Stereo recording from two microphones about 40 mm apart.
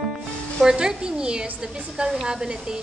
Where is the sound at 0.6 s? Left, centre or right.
Centre.